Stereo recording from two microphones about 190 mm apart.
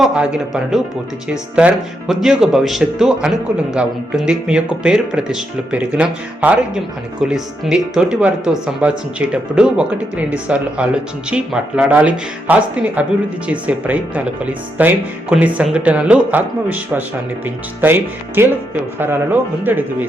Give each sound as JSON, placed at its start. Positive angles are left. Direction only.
{"t": 0.0, "sound": "speech", "side_deg": -5}